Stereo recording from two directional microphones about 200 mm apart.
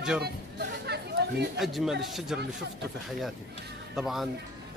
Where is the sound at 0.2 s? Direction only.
55° right (ahead or behind).